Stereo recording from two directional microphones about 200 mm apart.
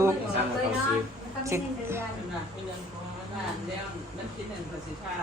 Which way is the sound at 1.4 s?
15° right (ahead or behind).